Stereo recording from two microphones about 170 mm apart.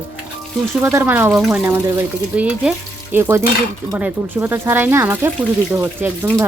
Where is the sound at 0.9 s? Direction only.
15° right (ahead or behind).